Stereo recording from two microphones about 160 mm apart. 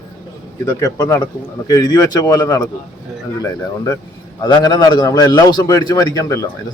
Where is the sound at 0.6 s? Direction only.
20° left (ahead or behind).